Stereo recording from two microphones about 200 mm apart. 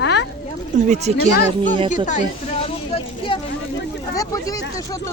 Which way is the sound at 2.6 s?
25° left (ahead or behind).